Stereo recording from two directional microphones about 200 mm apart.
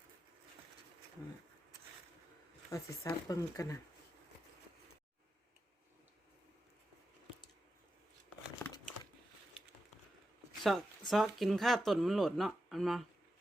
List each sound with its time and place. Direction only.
2.6 s speech: 15° left (ahead or behind)
8.6 s crumpling: 10° left (ahead or behind)
10.6 s speech: centre (ahead or behind)